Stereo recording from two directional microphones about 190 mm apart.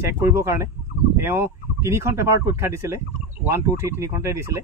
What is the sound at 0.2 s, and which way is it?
Speech, 15° right (ahead or behind).